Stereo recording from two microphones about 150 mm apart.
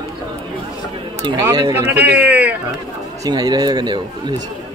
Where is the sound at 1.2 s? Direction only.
30° right (ahead or behind).